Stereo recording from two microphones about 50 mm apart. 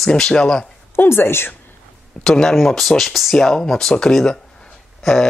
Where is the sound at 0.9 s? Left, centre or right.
Left.